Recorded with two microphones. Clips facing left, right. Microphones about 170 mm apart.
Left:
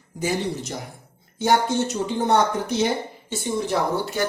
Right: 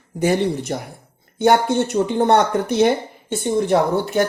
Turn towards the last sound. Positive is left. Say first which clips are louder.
# right 6 dB
turn(degrees=-55)  # may be behind; listen again after turning